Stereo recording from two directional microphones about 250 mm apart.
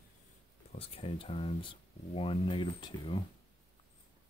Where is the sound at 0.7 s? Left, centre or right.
Left.